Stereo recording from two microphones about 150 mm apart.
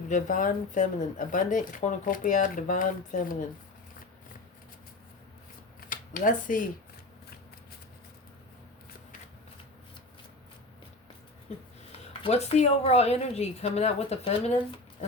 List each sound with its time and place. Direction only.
0.1 s speech: 60° left (ahead or behind)
5.9 s speech: 65° left (ahead or behind)
11.5 s a sound: 50° left (ahead or behind)
11.9 s speech: 40° left (ahead or behind)